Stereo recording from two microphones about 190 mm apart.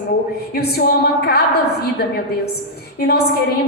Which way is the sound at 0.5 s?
55° left (ahead or behind).